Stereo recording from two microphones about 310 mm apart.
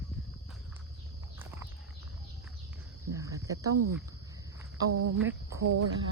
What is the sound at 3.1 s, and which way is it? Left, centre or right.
Cricket, centre.